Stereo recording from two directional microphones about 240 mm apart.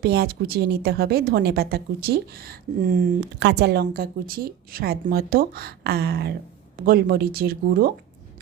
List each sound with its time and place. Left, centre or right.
0.0 s a woman's voice: right